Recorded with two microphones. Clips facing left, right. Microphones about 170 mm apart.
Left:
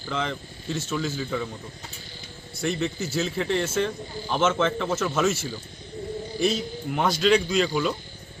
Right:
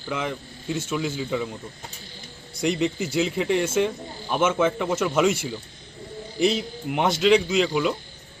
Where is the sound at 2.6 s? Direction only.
15° right (ahead or behind).